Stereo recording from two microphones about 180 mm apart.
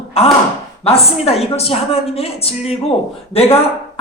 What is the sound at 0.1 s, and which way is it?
A woman's voice, 35° left (ahead or behind).